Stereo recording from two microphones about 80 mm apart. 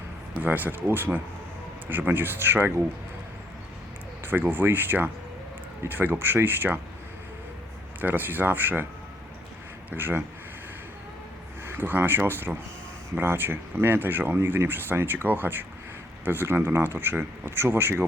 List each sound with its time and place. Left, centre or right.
0.3 s speech: right
4.2 s speech: right
8.0 s speech: right
9.9 s speech: right
11.6 s speech: right